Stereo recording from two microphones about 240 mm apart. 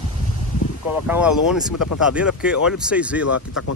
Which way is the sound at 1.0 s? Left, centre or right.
Centre.